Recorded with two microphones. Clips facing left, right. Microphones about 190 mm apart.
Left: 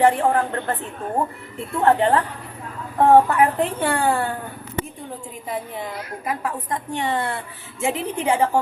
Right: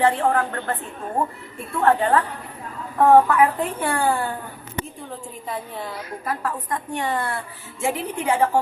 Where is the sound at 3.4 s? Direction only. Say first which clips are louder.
Left 1 dB; 25° left (ahead or behind).